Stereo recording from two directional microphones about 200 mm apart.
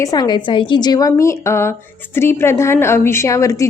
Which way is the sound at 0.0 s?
20° left (ahead or behind).